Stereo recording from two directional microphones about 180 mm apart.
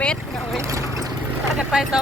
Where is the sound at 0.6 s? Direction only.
15° right (ahead or behind).